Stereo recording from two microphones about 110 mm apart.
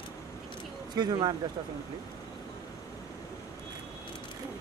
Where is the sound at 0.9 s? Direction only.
40° right (ahead or behind).